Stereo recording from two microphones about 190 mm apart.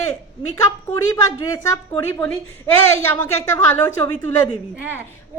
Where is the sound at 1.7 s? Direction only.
20° left (ahead or behind).